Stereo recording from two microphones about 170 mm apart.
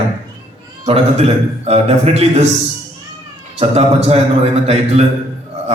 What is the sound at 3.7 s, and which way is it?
Speech, 40° right (ahead or behind).